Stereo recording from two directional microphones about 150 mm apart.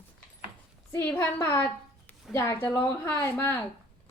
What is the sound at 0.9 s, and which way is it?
A woman's voice, 15° left (ahead or behind).